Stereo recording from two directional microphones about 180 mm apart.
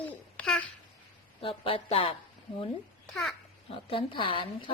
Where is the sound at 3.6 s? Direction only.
30° left (ahead or behind).